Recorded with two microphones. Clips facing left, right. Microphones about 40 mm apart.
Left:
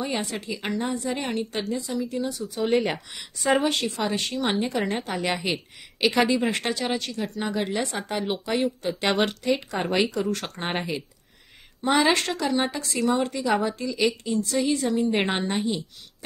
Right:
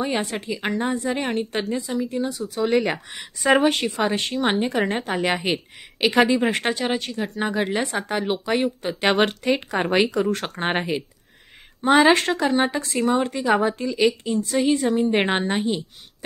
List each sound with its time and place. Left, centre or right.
0.0 s a woman's voice: right
2.4 s speech: right
3.1 s a woman's voice: right
8.5 s a woman's voice: right
9.2 s a woman's voice: right
12.1 s a woman's voice: right
13.9 s speech: centre
14.5 s a woman's voice: right